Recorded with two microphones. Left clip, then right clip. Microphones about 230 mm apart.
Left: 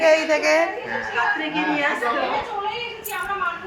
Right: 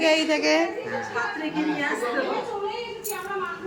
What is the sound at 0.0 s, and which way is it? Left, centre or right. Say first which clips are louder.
Speech: left 4 dB; centre.